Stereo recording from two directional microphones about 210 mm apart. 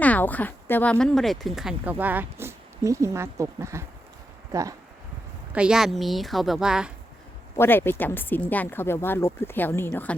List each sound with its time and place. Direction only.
0.0 s speech: 5° left (ahead or behind); by 4.7 s 15° right (ahead or behind)
5.5 s speech: 5° right (ahead or behind)
7.5 s speech: 10° left (ahead or behind)